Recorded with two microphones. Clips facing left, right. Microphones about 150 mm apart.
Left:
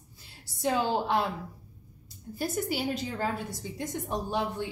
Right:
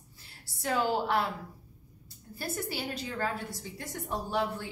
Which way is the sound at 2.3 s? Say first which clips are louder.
Left 5 dB; 20° left (ahead or behind).